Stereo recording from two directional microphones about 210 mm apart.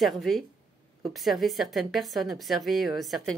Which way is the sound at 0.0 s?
Centre (ahead or behind).